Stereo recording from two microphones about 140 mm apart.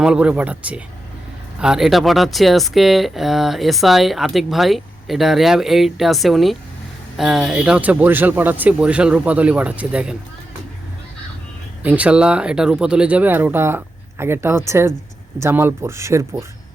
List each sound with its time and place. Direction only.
0.0 s speech: 5° right (ahead or behind)
11.8 s speech: 10° right (ahead or behind)